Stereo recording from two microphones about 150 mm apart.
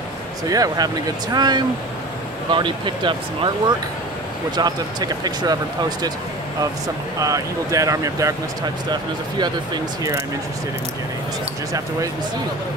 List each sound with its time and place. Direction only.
0.5 s speech: 25° right (ahead or behind)
7.2 s speech: 25° right (ahead or behind)